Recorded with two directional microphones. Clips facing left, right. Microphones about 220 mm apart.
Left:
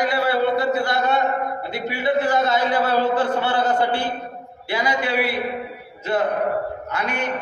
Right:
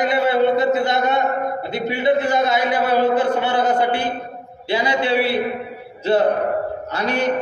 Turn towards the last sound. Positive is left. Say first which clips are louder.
# right 4 dB
turn(degrees=-35)  # may be behind; listen again after turning